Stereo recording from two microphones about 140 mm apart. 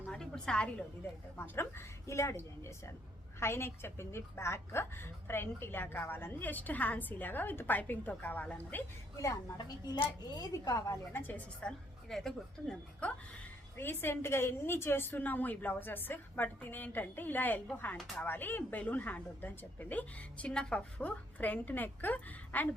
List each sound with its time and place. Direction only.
0.0 s a sound: 5° left (ahead or behind)
1.0 s a woman's voice: 15° left (ahead or behind)
9.1 s a woman's voice: 25° left (ahead or behind)